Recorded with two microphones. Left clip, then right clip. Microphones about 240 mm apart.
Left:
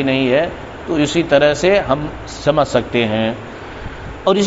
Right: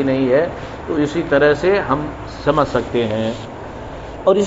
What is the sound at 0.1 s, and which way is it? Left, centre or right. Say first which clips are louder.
A man's voice: left 1 dB; left.